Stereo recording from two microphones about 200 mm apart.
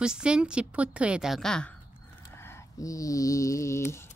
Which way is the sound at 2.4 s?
10° left (ahead or behind).